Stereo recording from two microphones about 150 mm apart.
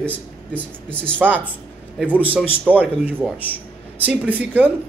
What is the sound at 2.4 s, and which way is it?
Speech, 10° left (ahead or behind).